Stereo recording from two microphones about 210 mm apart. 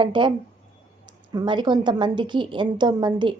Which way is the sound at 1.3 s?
20° right (ahead or behind).